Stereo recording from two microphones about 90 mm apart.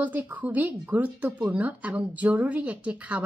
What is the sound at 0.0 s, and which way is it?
A woman's voice, 20° right (ahead or behind).